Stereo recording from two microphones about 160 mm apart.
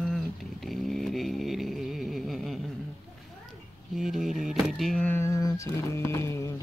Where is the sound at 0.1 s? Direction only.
Centre (ahead or behind).